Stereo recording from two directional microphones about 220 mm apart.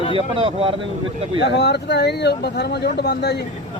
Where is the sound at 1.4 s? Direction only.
50° left (ahead or behind).